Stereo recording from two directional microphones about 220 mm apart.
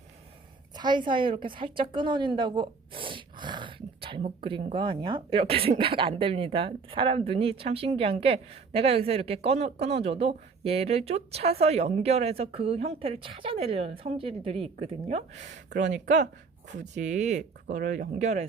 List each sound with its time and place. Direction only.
0.8 s a woman's voice: 20° right (ahead or behind)